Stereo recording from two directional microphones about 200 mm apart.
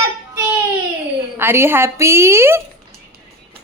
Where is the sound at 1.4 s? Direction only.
10° right (ahead or behind).